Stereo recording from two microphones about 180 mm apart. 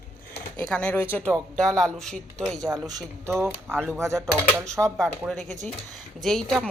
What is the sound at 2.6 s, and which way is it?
Speech, 20° right (ahead or behind).